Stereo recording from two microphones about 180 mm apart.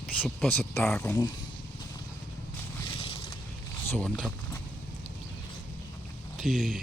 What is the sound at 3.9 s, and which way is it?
Speech, 5° left (ahead or behind).